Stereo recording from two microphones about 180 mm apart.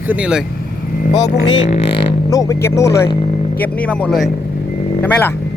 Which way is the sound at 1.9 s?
30° left (ahead or behind).